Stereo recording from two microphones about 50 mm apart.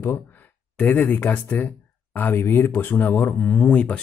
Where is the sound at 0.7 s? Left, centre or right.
Left.